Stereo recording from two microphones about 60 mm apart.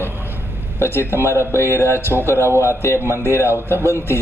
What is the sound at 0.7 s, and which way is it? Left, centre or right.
Speech, left.